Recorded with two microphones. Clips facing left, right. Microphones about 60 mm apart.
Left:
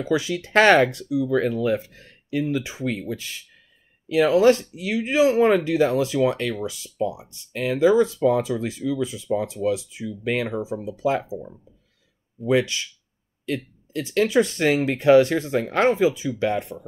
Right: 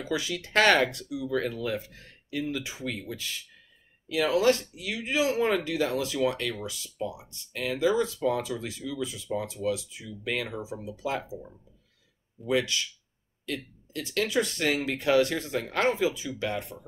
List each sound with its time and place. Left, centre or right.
0.0 s speech: left
12.4 s speech: left